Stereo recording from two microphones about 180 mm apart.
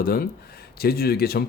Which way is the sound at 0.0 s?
55° left (ahead or behind).